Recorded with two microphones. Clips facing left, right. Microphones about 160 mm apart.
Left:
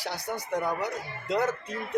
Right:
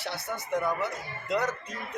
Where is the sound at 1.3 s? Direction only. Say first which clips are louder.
Left 2 dB; 30° left (ahead or behind).